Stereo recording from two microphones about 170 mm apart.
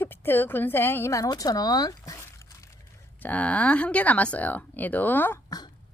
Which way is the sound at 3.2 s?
10° left (ahead or behind).